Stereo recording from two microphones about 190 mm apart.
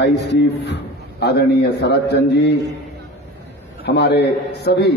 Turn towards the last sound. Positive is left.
turn(degrees=60)  # may be behind; listen again after turning